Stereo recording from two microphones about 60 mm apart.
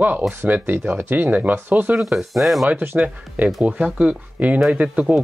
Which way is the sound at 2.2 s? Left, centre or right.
Centre.